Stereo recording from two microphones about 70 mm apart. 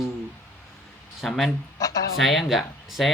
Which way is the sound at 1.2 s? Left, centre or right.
Centre.